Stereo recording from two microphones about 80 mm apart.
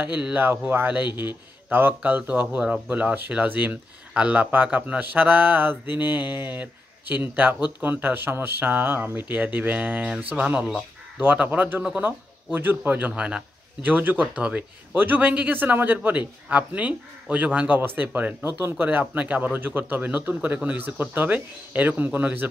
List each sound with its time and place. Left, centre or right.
0.2 s speech: right